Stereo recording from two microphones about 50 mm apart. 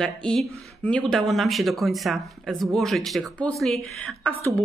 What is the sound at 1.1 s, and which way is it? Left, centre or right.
Speech, centre.